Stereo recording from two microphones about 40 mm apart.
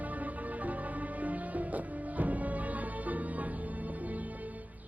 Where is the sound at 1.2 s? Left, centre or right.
Right.